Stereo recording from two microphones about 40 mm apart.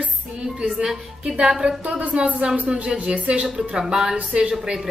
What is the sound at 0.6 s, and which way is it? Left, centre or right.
Speech, right.